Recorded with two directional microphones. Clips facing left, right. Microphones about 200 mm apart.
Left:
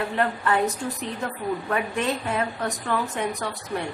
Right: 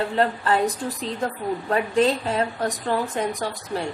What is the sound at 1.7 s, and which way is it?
A woman's voice, 30° right (ahead or behind).